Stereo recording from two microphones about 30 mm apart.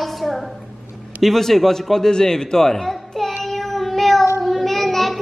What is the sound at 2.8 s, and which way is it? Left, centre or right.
Child singing, centre.